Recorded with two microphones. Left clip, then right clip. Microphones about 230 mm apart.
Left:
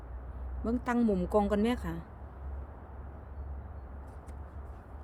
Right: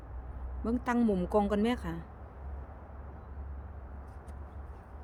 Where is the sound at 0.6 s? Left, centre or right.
Centre.